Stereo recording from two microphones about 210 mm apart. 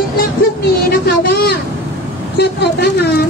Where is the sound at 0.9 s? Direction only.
50° left (ahead or behind).